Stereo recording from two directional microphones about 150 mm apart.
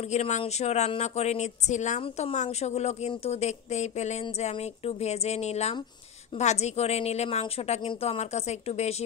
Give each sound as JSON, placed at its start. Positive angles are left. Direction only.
{"t": 0.1, "sound": "speech", "side_deg": 45}